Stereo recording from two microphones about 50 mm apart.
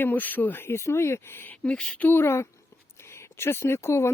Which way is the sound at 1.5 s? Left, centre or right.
Left.